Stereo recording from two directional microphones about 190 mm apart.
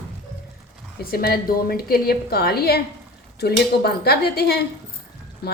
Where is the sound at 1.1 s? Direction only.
50° left (ahead or behind).